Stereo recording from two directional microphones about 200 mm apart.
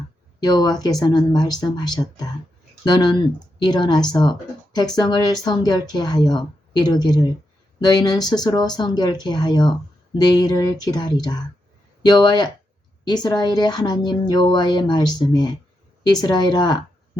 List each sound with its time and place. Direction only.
0.3 s speech: 20° left (ahead or behind)